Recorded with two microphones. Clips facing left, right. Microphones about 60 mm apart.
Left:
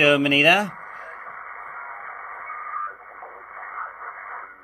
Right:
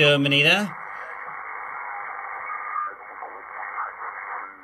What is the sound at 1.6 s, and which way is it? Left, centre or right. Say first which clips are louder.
Radio: right 3 dB; centre.